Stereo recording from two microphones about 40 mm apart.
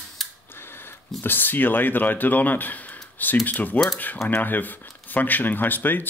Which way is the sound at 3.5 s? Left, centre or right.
Left.